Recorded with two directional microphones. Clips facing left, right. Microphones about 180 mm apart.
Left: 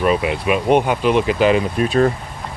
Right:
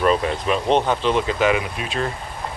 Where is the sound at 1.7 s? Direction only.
45° left (ahead or behind).